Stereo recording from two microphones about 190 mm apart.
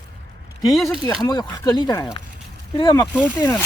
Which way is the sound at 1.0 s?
20° left (ahead or behind).